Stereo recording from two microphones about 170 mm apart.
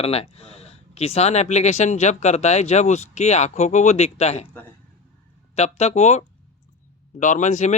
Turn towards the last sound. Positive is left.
turn(degrees=45)  # may be behind; listen again after turning